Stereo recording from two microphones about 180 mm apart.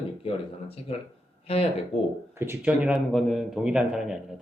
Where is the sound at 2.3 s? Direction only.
10° right (ahead or behind).